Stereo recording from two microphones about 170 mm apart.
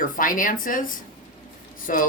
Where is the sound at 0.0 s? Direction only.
50° left (ahead or behind).